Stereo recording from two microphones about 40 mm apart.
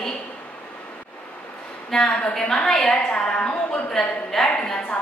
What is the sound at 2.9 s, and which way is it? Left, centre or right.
A woman's voice, left.